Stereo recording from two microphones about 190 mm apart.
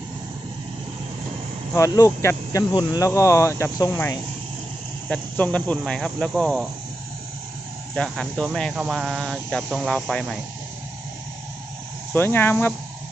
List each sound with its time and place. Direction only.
1.7 s speech: 15° left (ahead or behind); by 6.7 s 5° right (ahead or behind)
7.9 s speech: 5° left (ahead or behind)
12.1 s speech: 10° left (ahead or behind)